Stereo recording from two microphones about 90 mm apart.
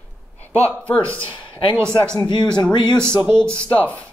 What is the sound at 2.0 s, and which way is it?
Speech, 55° left (ahead or behind).